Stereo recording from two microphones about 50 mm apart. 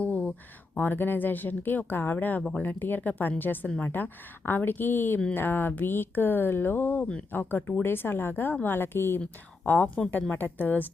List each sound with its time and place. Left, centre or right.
0.0 s a sound: left
0.8 s speech: left
9.6 s speech: left